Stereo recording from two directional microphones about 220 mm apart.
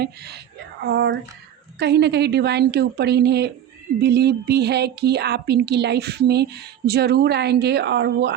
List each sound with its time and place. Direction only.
0.0 s a woman's voice: 50° right (ahead or behind)